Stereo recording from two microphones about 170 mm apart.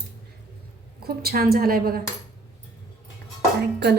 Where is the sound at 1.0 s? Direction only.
65° right (ahead or behind).